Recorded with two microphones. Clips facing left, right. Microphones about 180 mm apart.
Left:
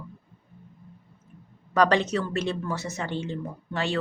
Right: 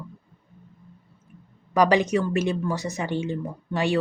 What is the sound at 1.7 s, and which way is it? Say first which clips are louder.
Speech: right 2 dB; 10° right (ahead or behind).